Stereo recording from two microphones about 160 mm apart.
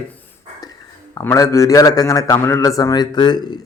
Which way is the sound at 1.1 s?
15° left (ahead or behind).